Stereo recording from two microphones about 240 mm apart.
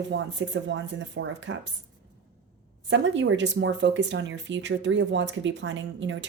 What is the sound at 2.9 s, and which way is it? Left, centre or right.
Speech, right.